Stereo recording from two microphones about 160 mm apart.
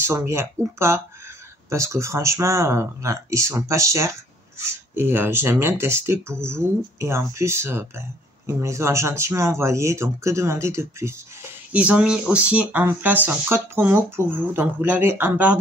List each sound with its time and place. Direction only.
0.0 s speech: 15° right (ahead or behind)